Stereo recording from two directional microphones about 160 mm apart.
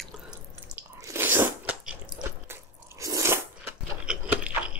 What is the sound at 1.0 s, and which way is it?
Biting, 15° right (ahead or behind).